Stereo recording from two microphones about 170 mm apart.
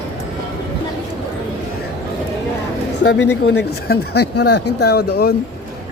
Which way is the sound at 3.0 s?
90° left.